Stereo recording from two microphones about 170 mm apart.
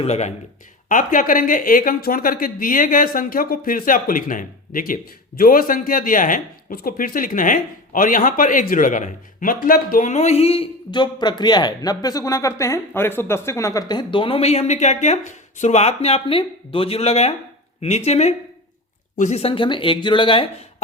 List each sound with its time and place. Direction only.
0.0 s speech: 40° left (ahead or behind)